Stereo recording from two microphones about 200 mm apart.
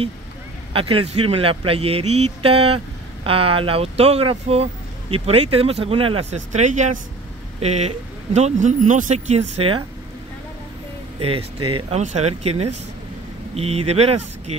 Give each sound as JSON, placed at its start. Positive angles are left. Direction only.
{"t": 0.7, "sound": "speech", "side_deg": -30}
{"t": 11.1, "sound": "speech", "side_deg": -30}